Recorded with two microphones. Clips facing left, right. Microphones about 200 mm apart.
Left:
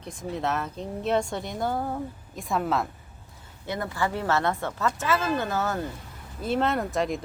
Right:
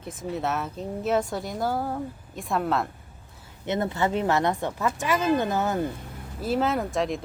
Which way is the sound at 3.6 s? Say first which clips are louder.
Right 4 dB; 25° right (ahead or behind).